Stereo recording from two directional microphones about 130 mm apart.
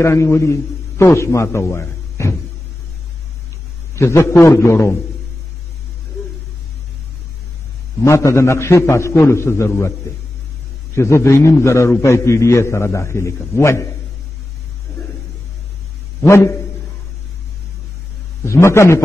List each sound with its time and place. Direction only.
0.0 s a man's voice: 20° left (ahead or behind)
3.9 s a man's voice: 20° left (ahead or behind)
8.0 s a man's voice: 20° left (ahead or behind)
11.0 s a man's voice: 20° left (ahead or behind)
16.2 s a man's voice: 20° left (ahead or behind)
18.4 s a man's voice: 20° left (ahead or behind)